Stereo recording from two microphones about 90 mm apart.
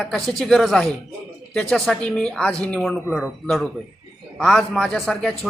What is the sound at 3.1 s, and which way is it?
Speech, 15° right (ahead or behind).